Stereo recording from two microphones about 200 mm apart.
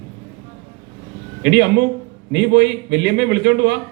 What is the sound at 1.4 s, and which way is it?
A man's voice, 60° right (ahead or behind).